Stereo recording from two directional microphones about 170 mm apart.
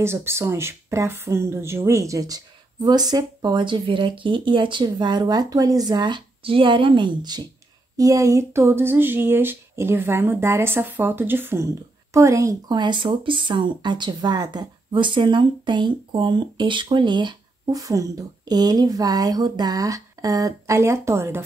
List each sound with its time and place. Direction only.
0.0 s speech: 15° right (ahead or behind)